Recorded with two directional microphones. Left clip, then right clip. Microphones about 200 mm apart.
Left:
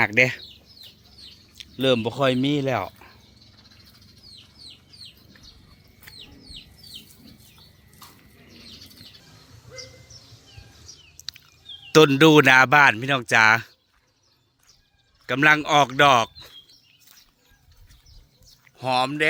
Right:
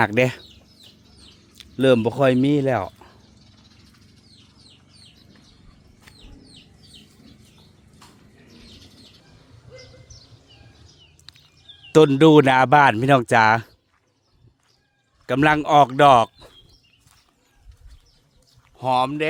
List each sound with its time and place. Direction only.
0.0 s speech: 40° right (ahead or behind)
1.5 s speech: 45° right (ahead or behind); by 3.2 s 30° right (ahead or behind)
11.2 s a sound: 35° right (ahead or behind)
11.9 s speech: 15° right (ahead or behind)
15.3 s speech: 30° right (ahead or behind)
18.8 s speech: 20° right (ahead or behind)